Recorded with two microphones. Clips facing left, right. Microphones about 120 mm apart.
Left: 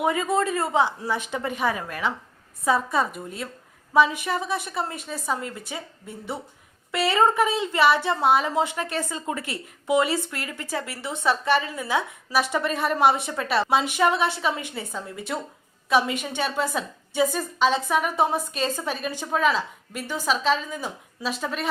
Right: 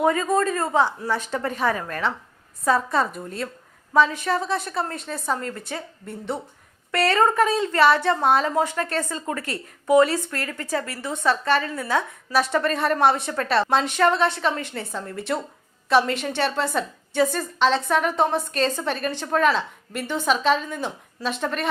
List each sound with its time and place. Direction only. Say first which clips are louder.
0.0 s speech: right 3 dB; 15° left (ahead or behind)
2.6 s a woman's voice: right 1 dB; centre (ahead or behind)
4.5 s a woman's voice: right 2 dB; 5° left (ahead or behind)
7.4 s a woman's voice: right 3 dB; 20° left (ahead or behind)
7.8 s a woman's voice: right 2 dB; 5° left (ahead or behind)
8.5 s a woman's voice: right 2 dB; 15° left (ahead or behind); by 21.7 s centre (ahead or behind)